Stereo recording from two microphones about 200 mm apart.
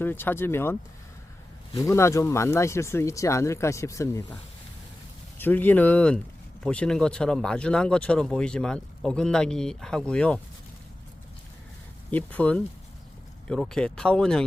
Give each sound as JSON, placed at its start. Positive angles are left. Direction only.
{"t": 0.0, "sound": "speech", "side_deg": 10}
{"t": 5.4, "sound": "speech", "side_deg": 10}
{"t": 12.1, "sound": "speech", "side_deg": 5}